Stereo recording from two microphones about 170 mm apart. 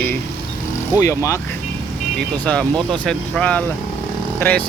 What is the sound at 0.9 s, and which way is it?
Speech, 20° left (ahead or behind).